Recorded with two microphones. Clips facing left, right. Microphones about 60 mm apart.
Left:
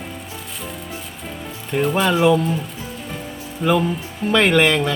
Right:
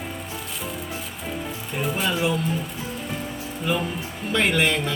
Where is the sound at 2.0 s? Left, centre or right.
Left.